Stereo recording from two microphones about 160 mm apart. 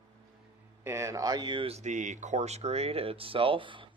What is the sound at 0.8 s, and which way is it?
Speech, 15° right (ahead or behind).